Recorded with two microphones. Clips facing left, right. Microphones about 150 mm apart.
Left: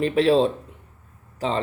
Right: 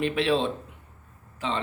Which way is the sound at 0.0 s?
35° left (ahead or behind).